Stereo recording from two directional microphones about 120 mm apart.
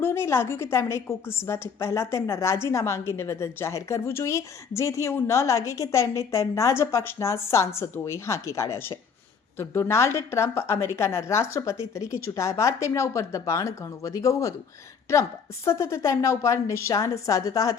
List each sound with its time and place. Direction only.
0.0 s a woman's voice: 20° left (ahead or behind)